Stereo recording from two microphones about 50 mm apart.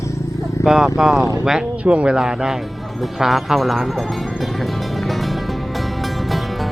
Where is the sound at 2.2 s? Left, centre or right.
Centre.